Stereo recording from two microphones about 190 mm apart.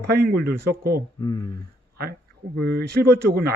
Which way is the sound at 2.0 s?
55° right (ahead or behind).